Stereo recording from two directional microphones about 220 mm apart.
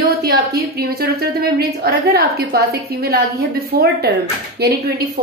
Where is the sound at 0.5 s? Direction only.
45° right (ahead or behind).